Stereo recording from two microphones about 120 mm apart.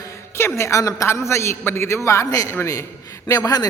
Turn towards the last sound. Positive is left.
turn(degrees=30)  # may be behind; listen again after turning